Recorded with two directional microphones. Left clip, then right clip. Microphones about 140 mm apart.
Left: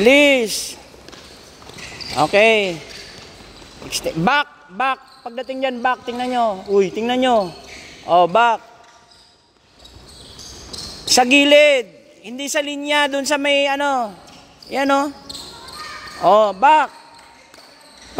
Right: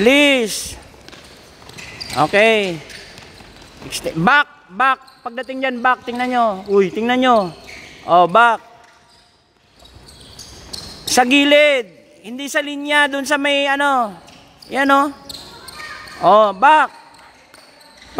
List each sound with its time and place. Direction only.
0.0 s speech: 20° right (ahead or behind)
2.0 s speech: 25° right (ahead or behind)
3.9 s speech: 30° right (ahead or behind)
11.1 s speech: 25° right (ahead or behind)
16.2 s speech: 30° right (ahead or behind)